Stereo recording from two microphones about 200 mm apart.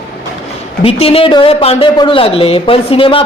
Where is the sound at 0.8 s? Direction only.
30° left (ahead or behind).